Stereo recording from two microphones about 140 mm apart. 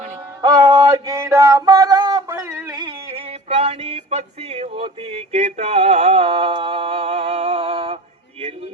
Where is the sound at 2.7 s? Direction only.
30° right (ahead or behind).